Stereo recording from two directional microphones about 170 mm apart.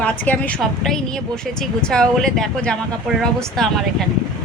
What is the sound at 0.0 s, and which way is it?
Speech, 10° left (ahead or behind).